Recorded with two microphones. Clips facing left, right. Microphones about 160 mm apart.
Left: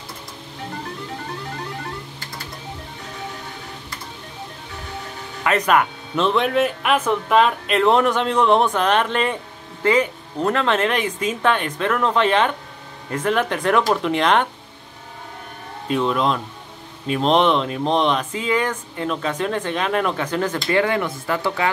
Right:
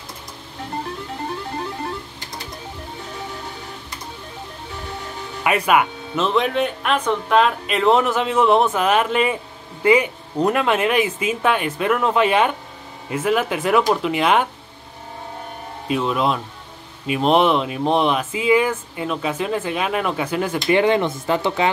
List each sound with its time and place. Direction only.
5.4 s speech: 10° right (ahead or behind)
15.9 s speech: 5° right (ahead or behind)
20.5 s speech: 20° right (ahead or behind)